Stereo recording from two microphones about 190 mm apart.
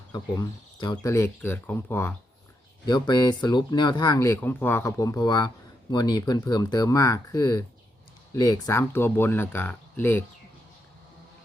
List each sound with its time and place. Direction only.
0.1 s speech: 20° left (ahead or behind)